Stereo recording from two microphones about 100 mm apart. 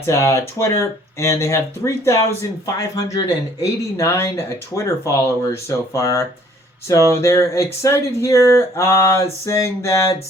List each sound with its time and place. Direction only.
0.0 s speech: 30° left (ahead or behind)